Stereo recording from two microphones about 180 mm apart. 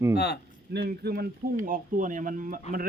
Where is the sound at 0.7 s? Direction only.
60° right (ahead or behind).